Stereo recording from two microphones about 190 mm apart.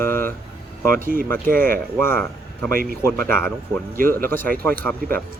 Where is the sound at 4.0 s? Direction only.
45° right (ahead or behind).